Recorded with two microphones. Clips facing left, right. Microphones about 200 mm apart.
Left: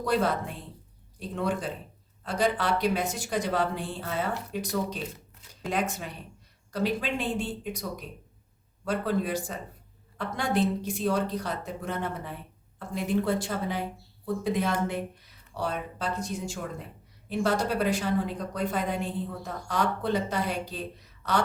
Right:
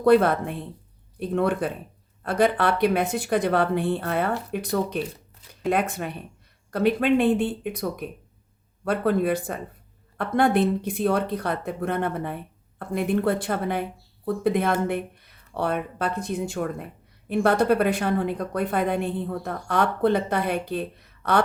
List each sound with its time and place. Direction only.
0.0 s speech: 60° right (ahead or behind)